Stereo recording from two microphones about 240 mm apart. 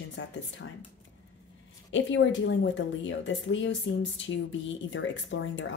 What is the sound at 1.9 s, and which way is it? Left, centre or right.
Speech, left.